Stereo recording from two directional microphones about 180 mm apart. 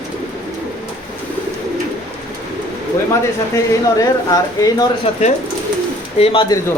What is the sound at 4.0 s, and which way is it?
Speech, 20° left (ahead or behind).